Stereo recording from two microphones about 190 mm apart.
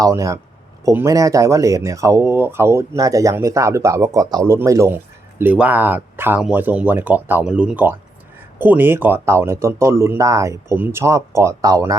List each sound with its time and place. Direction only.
0.0 s speech: 15° right (ahead or behind)